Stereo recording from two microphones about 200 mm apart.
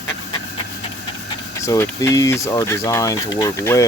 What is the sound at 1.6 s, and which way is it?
Speech, 15° left (ahead or behind).